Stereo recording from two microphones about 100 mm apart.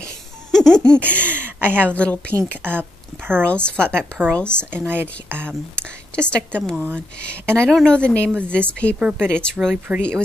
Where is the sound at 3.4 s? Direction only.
10° left (ahead or behind).